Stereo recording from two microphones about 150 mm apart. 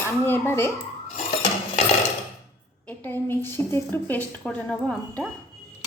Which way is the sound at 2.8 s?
15° left (ahead or behind).